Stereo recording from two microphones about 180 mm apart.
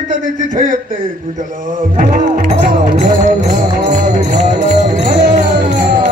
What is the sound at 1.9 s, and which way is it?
Speech, 45° right (ahead or behind).